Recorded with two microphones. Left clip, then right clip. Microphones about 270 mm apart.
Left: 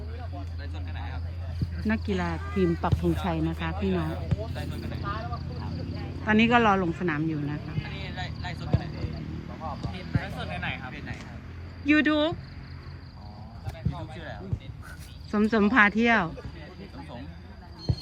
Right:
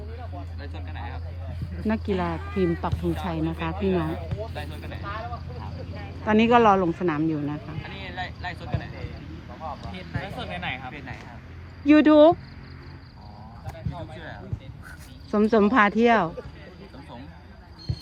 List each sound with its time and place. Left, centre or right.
0.6 s a sound: right
1.9 s speech: centre
3.8 s speech: right
4.5 s vehicle: right
6.2 s speech: centre
7.8 s vehicle: right
9.6 s a sound: right
10.9 s vehicle: centre
11.9 s speech: centre
13.7 s a sound: right
15.3 s speech: centre